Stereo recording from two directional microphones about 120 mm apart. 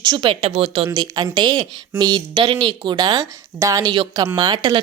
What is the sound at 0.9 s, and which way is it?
Speech, 35° right (ahead or behind).